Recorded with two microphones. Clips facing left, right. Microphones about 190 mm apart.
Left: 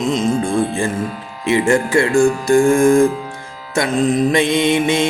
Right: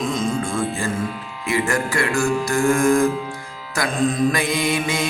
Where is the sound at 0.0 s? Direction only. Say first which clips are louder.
Left 5 dB; 20° left (ahead or behind).